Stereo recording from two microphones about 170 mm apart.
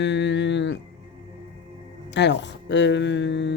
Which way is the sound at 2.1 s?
90° left.